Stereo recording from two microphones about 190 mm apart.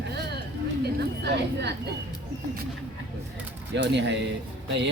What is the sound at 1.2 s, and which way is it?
Speech, 65° right (ahead or behind).